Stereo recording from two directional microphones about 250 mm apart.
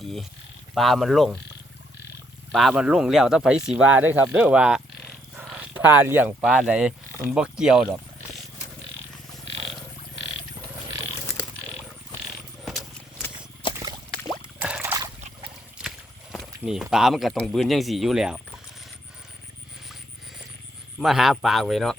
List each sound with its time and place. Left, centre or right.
0.7 s speech: centre
2.5 s speech: centre
5.4 s roaring cats: centre
6.0 s speech: centre
14.6 s a sound: centre
16.3 s speech: centre
21.0 s speech: centre